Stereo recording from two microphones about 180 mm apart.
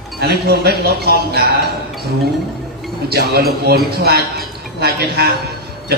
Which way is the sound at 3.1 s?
60° right (ahead or behind).